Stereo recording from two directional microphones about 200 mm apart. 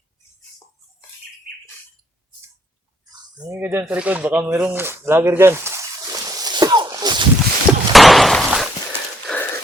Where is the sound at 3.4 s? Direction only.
15° right (ahead or behind).